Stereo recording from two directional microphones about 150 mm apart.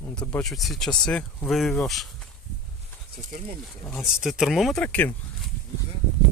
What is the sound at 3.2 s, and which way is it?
Speech, 60° right (ahead or behind).